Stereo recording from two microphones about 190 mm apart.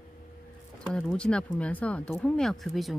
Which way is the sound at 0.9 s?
5° left (ahead or behind).